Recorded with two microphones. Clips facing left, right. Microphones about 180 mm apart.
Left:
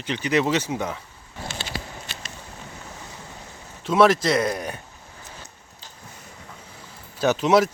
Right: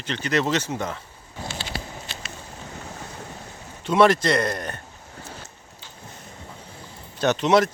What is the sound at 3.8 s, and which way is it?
Speech, centre (ahead or behind).